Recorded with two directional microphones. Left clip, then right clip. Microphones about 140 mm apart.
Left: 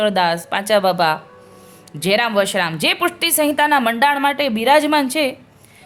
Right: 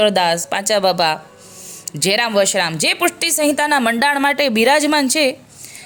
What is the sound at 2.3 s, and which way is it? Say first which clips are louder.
A woman's voice: right 2 dB; 30° right (ahead or behind).